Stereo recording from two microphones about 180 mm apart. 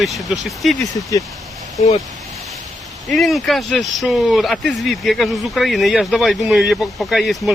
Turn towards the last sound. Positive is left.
turn(degrees=0)  # may be behind; listen again after turning